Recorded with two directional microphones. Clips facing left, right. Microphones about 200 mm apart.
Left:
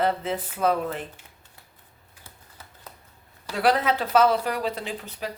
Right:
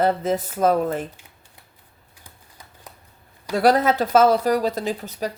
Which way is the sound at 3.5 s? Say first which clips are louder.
Right 5 dB; 45° right (ahead or behind).